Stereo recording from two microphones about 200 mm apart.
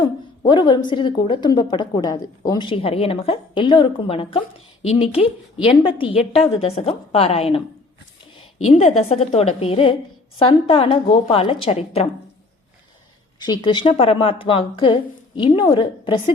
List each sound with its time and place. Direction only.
0.4 s a woman's voice: 25° left (ahead or behind)
8.7 s a woman's voice: 35° left (ahead or behind)
13.4 s a woman's voice: 20° left (ahead or behind)